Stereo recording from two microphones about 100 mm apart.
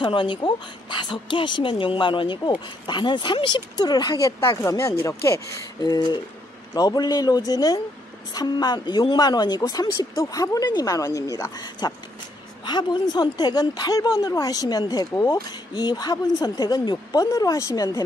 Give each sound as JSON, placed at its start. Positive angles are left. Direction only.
{"t": 0.0, "sound": "speech", "side_deg": 50}
{"t": 4.4, "sound": "speech", "side_deg": 30}
{"t": 5.8, "sound": "a woman's voice", "side_deg": 45}